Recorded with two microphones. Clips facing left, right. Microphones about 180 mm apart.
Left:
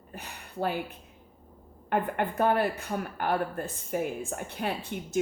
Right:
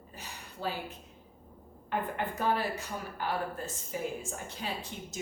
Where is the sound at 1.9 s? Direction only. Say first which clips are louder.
Left 5 dB; 60° left (ahead or behind).